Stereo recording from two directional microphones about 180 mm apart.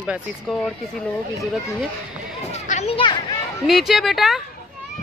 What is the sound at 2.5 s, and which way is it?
Speech, 40° left (ahead or behind).